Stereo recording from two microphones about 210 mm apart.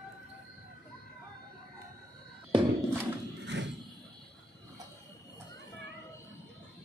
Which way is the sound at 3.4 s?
55° right (ahead or behind).